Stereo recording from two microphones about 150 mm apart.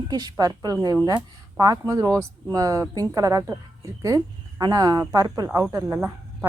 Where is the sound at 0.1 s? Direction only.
25° right (ahead or behind).